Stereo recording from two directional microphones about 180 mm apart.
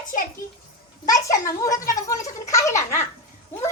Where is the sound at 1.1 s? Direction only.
20° left (ahead or behind).